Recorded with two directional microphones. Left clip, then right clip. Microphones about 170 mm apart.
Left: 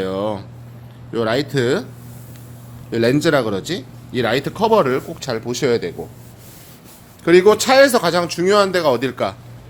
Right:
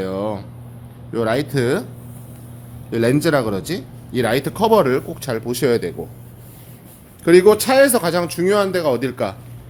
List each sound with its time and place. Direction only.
0.0 s a sound: 10° left (ahead or behind)
1.1 s a man's voice: 5° left (ahead or behind)
2.9 s a man's voice: centre (ahead or behind)
7.3 s speech: 5° left (ahead or behind)